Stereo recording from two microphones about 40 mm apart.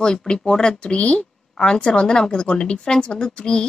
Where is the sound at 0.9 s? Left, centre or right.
Left.